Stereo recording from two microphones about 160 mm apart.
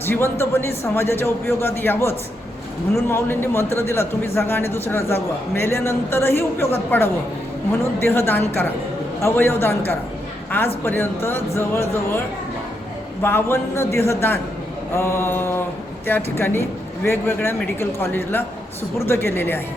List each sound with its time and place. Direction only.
0.0 s a man's voice: 15° left (ahead or behind)
13.2 s a man's voice: 15° left (ahead or behind)